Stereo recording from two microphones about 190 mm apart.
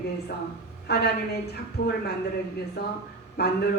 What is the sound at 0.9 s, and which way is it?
Speech, 60° left (ahead or behind).